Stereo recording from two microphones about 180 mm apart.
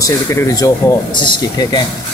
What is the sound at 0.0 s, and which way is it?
Speech, 15° left (ahead or behind).